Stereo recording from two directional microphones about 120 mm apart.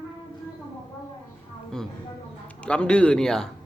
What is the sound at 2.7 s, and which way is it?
Speech, 10° left (ahead or behind).